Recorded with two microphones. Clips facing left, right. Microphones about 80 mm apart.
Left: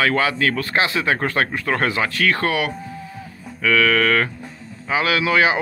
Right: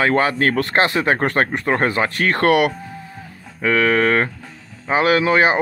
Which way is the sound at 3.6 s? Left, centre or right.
Right.